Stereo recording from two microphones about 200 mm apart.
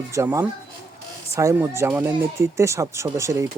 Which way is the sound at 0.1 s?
15° right (ahead or behind).